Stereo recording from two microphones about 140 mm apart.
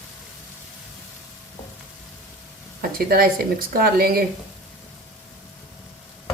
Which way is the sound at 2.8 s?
90° right.